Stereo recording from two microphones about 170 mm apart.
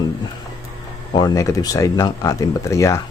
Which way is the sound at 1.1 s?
25° left (ahead or behind).